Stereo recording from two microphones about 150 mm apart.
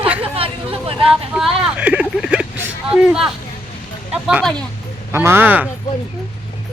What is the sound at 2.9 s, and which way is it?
Speech, 5° right (ahead or behind).